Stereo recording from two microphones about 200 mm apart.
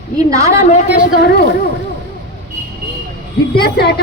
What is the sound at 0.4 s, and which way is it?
Speech, 40° left (ahead or behind).